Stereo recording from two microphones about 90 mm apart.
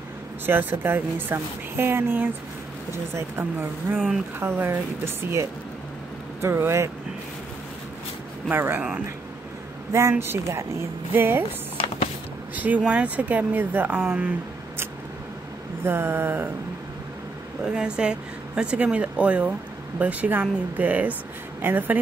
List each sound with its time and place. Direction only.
0.5 s speech: 20° right (ahead or behind)
8.5 s speech: 20° right (ahead or behind)
9.9 s speech: 30° right (ahead or behind)
12.5 s speech: 15° right (ahead or behind)
15.8 s speech: 25° right (ahead or behind)
17.6 s speech: 10° right (ahead or behind)